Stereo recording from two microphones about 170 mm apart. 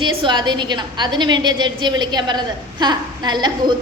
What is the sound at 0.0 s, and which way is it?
A woman's voice, 25° right (ahead or behind).